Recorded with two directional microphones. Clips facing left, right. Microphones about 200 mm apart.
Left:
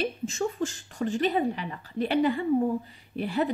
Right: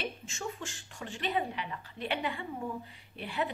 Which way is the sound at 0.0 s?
40° left (ahead or behind).